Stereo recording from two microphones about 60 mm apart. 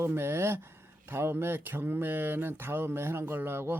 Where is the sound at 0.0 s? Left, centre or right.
Right.